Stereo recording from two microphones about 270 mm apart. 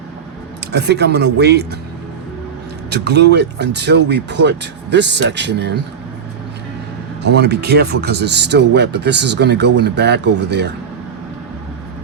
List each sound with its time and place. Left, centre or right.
0.6 s speech: right
2.9 s speech: right
7.2 s speech: right